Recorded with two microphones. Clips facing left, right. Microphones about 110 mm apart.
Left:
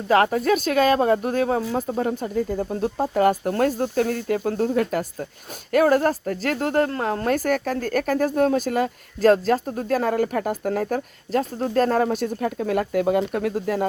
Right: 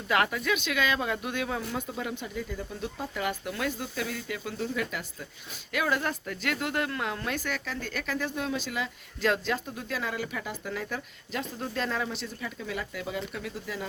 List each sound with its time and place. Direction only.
0.1 s a woman's voice: 40° left (ahead or behind)